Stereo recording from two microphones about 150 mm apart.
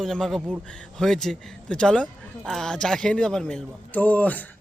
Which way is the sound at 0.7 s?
5° left (ahead or behind).